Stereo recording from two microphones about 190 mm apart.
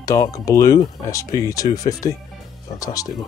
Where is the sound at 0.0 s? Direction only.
15° left (ahead or behind).